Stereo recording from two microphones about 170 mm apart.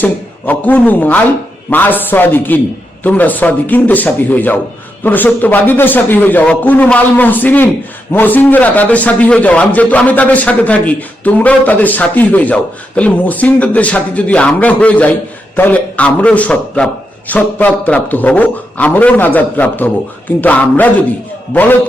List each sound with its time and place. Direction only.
0.0 s a man's voice: 10° left (ahead or behind)